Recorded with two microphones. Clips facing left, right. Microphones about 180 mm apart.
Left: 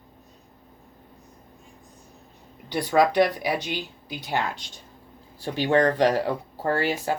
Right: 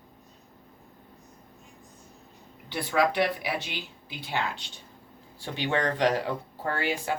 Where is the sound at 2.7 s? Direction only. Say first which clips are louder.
Left 5 dB; 40° left (ahead or behind).